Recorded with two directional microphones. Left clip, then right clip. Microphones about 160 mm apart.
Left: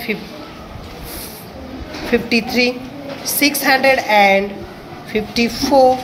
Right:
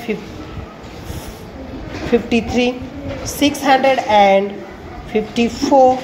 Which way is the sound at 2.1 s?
15° right (ahead or behind).